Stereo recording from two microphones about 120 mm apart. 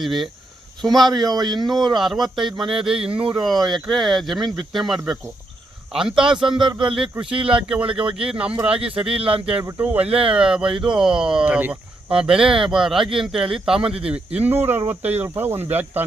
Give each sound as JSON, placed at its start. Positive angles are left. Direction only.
{"t": 0.0, "sound": "speech", "side_deg": 0}